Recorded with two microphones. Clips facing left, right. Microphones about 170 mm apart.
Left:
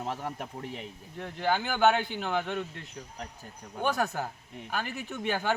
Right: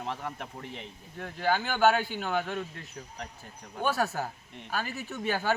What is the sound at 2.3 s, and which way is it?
Speech, centre (ahead or behind).